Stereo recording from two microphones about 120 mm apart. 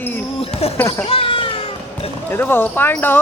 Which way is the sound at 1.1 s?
50° left (ahead or behind).